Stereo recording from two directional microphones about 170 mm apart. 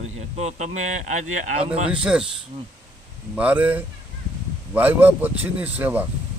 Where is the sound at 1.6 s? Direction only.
5° right (ahead or behind).